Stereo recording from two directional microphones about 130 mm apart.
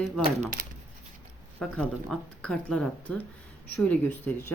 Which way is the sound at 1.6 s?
5° left (ahead or behind).